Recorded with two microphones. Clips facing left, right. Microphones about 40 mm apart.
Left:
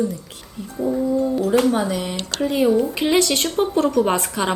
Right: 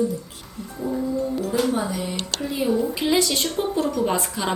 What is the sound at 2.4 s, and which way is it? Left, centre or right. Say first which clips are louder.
A woman's voice: left 5 dB; left.